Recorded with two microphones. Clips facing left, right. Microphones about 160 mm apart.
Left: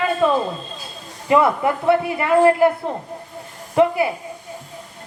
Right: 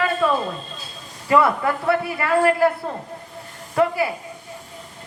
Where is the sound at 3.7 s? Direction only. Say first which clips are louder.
Left 3 dB; 20° left (ahead or behind).